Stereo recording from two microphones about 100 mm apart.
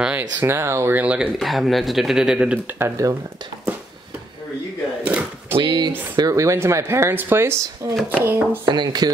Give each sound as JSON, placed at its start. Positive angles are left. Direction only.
{"t": 0.0, "sound": "speech", "side_deg": -15}
{"t": 1.4, "sound": "speech", "side_deg": 0}
{"t": 2.8, "sound": "speech", "side_deg": -30}
{"t": 5.0, "sound": "a sound", "side_deg": -15}
{"t": 5.6, "sound": "speech", "side_deg": -50}
{"t": 8.6, "sound": "speech", "side_deg": -45}